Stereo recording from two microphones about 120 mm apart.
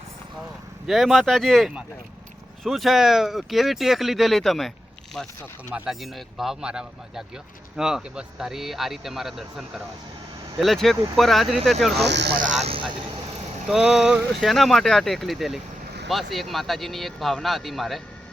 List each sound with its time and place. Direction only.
0.9 s speech: centre (ahead or behind)
12.5 s speech: 70° right (ahead or behind)
13.7 s speech: 5° right (ahead or behind)